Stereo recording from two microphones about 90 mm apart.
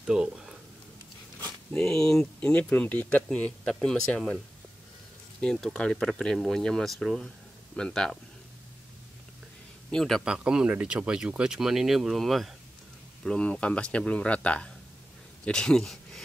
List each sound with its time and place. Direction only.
0.0 s speech: 10° right (ahead or behind)
1.8 s speech: 5° left (ahead or behind)
2.5 s speech: 15° left (ahead or behind)
5.4 s speech: 10° left (ahead or behind)
9.8 s a man's voice: 5° left (ahead or behind)
10.2 s speech: 10° right (ahead or behind)
13.2 s speech: 10° left (ahead or behind)